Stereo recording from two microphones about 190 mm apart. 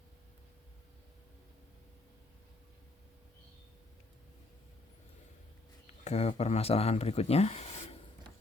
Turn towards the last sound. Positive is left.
turn(degrees=35)  # may be behind; listen again after turning